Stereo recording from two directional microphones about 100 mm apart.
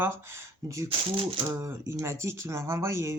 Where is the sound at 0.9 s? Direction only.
65° right (ahead or behind).